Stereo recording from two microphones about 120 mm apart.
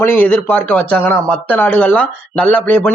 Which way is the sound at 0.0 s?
15° left (ahead or behind).